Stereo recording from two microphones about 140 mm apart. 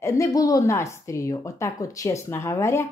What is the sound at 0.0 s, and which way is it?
A woman's voice, 25° left (ahead or behind).